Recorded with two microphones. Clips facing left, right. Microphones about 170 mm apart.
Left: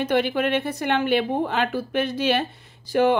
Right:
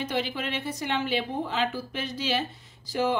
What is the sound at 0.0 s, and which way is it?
A woman's voice, 60° left (ahead or behind).